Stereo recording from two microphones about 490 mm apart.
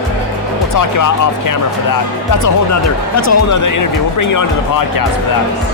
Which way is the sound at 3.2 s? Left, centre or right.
Left.